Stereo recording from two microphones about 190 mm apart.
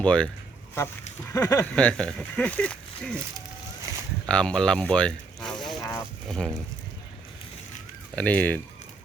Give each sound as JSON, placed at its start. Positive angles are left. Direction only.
{"t": 0.0, "sound": "speech", "side_deg": 5}
{"t": 1.3, "sound": "speech", "side_deg": 15}
{"t": 4.3, "sound": "speech", "side_deg": 5}
{"t": 5.8, "sound": "a sound", "side_deg": 15}
{"t": 6.2, "sound": "speech", "side_deg": 5}
{"t": 8.1, "sound": "speech", "side_deg": 5}